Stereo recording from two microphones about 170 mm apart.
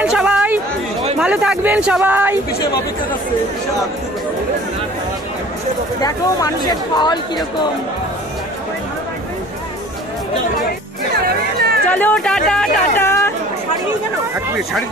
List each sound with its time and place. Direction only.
0.0 s chatter: 5° right (ahead or behind)
1.2 s speech: 5° right (ahead or behind)
6.7 s a woman's voice: 25° left (ahead or behind)
11.2 s chatter: 65° right (ahead or behind)
11.9 s speech: 10° left (ahead or behind)
12.9 s a sound: 15° left (ahead or behind)